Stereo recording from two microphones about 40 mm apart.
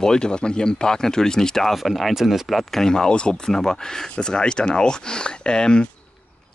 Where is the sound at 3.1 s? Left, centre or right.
Left.